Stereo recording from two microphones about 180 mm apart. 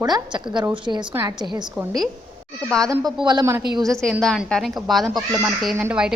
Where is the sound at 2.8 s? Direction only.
20° right (ahead or behind).